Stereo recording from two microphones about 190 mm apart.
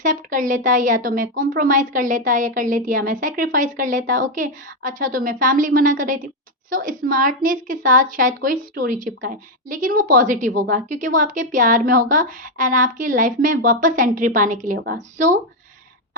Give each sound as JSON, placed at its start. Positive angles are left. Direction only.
{"t": 0.0, "sound": "a woman's voice", "side_deg": -45}